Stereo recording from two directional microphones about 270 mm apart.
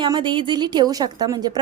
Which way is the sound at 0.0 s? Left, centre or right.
Centre.